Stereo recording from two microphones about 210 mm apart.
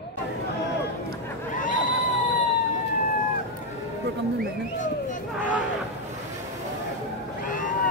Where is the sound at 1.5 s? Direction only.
40° left (ahead or behind).